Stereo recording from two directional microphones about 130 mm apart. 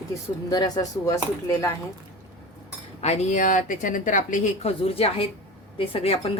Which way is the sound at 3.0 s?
65° left (ahead or behind).